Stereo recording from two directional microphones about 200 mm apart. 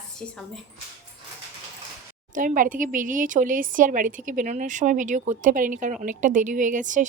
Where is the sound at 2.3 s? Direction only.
40° right (ahead or behind).